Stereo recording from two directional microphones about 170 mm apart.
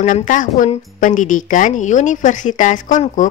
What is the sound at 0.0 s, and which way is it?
A woman's voice, 50° left (ahead or behind).